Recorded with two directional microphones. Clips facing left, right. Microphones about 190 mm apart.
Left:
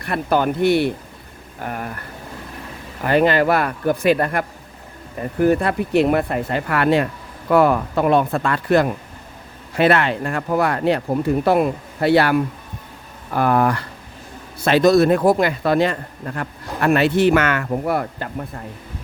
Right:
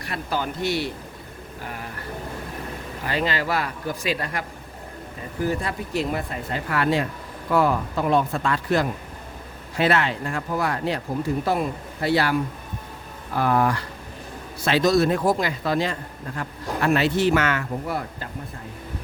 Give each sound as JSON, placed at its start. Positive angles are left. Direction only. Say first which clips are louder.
{"t": 0.0, "sound": "speech", "louder": "left 9 dB", "side_deg": 60}
{"t": 3.0, "sound": "speech", "louder": "left 10 dB", "side_deg": 55}